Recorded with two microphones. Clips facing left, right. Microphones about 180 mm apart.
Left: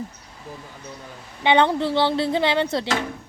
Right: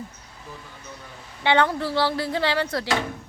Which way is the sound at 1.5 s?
20° left (ahead or behind).